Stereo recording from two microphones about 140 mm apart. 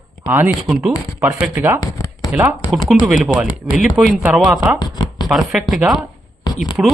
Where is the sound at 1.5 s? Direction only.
20° right (ahead or behind).